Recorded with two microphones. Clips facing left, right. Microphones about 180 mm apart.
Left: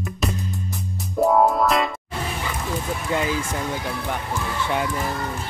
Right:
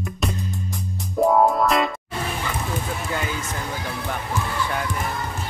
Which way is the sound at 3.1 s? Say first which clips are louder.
Left 7 dB; 30° left (ahead or behind).